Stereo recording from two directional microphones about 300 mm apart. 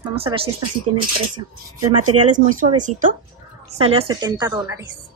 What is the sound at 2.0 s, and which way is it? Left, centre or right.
Speech, right.